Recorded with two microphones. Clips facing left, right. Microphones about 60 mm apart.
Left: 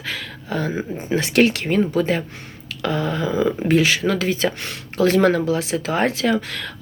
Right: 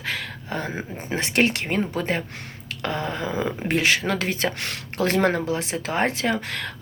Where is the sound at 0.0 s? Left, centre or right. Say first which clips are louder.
Even; right.